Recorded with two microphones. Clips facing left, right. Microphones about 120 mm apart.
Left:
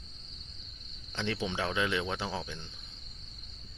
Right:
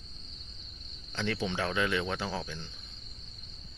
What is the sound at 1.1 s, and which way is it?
Speech, 20° left (ahead or behind).